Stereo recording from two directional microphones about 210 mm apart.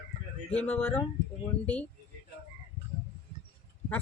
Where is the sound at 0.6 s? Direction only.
10° left (ahead or behind).